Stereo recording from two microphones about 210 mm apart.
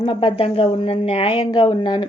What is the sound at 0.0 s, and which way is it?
Speech, 25° left (ahead or behind).